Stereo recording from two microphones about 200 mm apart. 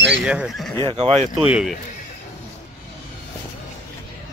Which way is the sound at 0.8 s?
35° right (ahead or behind).